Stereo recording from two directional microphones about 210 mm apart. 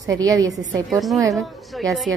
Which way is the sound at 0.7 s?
Centre (ahead or behind).